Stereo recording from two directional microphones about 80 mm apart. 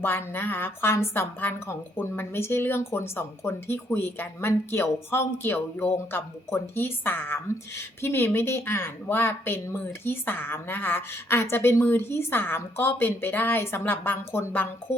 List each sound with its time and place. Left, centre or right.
0.0 s speech: left